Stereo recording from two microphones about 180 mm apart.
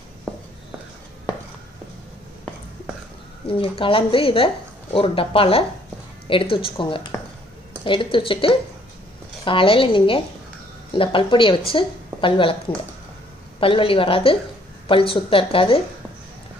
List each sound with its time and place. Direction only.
3.4 s a woman's voice: 30° left (ahead or behind)